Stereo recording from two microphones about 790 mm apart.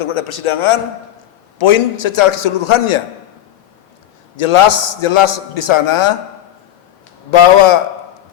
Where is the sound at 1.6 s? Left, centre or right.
Left.